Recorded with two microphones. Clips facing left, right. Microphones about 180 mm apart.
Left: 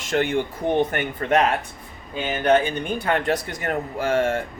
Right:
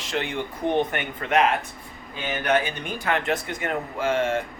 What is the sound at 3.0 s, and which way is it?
Speech, 35° left (ahead or behind).